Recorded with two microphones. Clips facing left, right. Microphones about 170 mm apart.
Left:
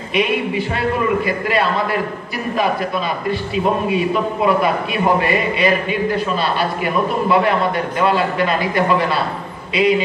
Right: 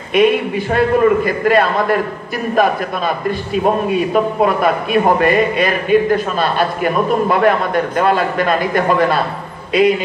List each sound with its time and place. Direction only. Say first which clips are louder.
0.1 s a man's voice: right 6 dB; 50° right (ahead or behind)
3.3 s a man's voice: right 3 dB; 50° right (ahead or behind)